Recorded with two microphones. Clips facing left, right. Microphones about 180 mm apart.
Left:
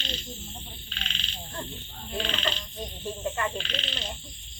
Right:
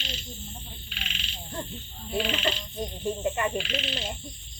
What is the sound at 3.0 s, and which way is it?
Frog, 20° right (ahead or behind).